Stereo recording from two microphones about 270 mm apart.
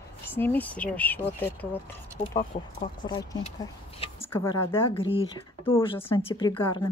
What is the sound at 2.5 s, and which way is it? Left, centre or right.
Speech, left.